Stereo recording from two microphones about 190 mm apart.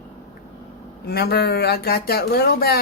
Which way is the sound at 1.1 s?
55° left (ahead or behind).